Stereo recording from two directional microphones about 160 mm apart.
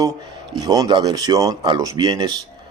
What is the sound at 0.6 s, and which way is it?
Speech, 25° right (ahead or behind).